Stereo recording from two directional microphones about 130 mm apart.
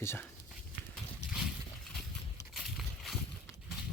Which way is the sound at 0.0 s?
20° left (ahead or behind).